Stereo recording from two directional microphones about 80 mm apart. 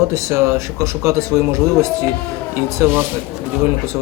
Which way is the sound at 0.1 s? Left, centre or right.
Right.